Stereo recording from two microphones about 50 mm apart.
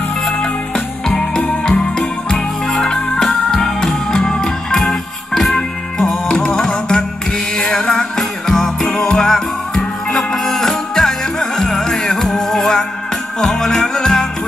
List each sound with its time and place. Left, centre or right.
0.3 s music: centre